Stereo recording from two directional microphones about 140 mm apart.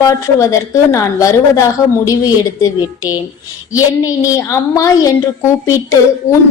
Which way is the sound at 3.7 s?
25° left (ahead or behind).